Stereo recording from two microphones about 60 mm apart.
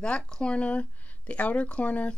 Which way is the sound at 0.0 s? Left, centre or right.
Centre.